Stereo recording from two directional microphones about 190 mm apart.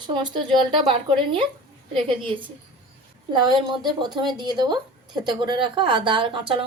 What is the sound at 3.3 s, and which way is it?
Speech, 25° right (ahead or behind).